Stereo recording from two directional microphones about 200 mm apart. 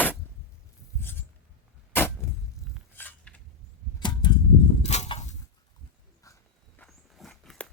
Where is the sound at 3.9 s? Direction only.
20° left (ahead or behind).